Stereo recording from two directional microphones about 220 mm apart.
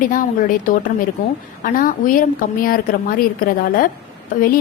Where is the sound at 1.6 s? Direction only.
40° left (ahead or behind).